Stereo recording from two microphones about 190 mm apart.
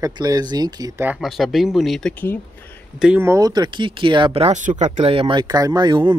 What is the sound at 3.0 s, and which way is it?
Speech, 10° right (ahead or behind).